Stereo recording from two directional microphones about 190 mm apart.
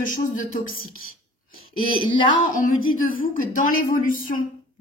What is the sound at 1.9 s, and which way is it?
Speech, 25° left (ahead or behind).